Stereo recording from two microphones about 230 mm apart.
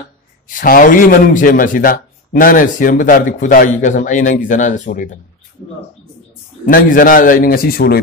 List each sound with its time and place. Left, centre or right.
0.5 s speech: left
6.6 s speech: left